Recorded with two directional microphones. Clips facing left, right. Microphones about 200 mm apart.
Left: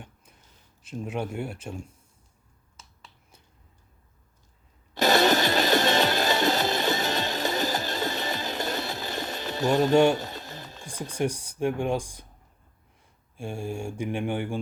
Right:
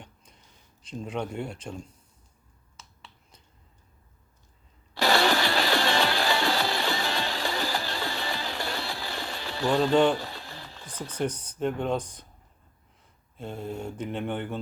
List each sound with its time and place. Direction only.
0.8 s mantra: 5° left (ahead or behind)
4.9 s music: 20° left (ahead or behind)
13.3 s mantra: 10° left (ahead or behind)